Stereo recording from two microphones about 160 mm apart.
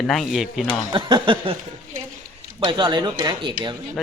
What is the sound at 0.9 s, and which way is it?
Speech, 30° right (ahead or behind).